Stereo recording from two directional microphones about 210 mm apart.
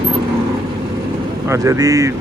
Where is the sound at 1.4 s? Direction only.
15° right (ahead or behind).